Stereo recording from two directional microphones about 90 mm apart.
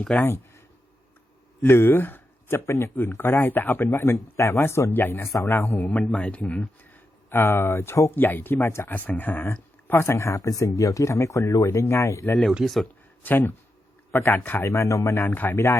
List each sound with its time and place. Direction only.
0.2 s speech: 30° left (ahead or behind)
1.6 s a man's voice: 25° left (ahead or behind)
12.5 s speech: centre (ahead or behind)
13.2 s a man's voice: 20° left (ahead or behind)
15.2 s a man's voice: 20° left (ahead or behind)